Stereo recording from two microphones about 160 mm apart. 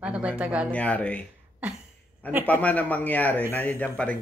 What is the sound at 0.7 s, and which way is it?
Speech, 10° left (ahead or behind).